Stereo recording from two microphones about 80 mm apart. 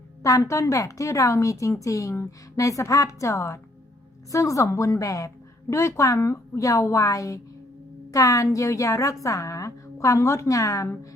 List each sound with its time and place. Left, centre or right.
0.2 s a woman's voice: left